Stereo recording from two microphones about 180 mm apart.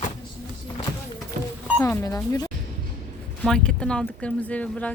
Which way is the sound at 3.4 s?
5° left (ahead or behind).